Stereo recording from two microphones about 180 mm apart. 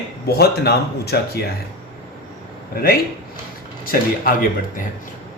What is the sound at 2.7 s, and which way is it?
Speech, 55° left (ahead or behind).